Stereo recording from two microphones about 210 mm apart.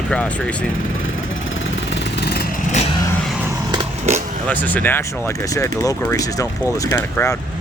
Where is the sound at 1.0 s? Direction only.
65° left (ahead or behind); by 2.5 s 50° left (ahead or behind).